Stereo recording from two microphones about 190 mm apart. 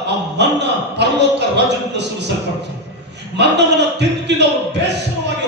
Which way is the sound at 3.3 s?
65° right (ahead or behind).